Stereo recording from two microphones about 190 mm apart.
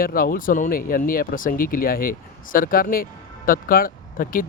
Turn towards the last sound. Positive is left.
turn(degrees=50)  # may be behind; listen again after turning